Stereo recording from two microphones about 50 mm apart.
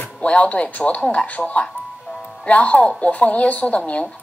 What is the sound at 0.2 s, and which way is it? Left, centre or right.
Speech, left.